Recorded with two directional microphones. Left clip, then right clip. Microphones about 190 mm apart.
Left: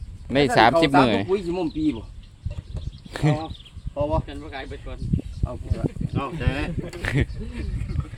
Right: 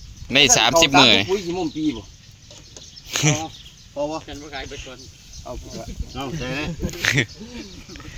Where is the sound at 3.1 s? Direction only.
15° left (ahead or behind).